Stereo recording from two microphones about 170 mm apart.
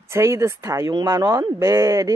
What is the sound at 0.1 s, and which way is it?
Speech, 15° right (ahead or behind).